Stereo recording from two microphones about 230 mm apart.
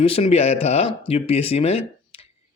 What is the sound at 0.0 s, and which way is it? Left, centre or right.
Speech, left.